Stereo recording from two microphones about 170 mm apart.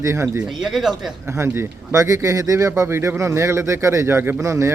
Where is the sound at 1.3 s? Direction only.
15° right (ahead or behind).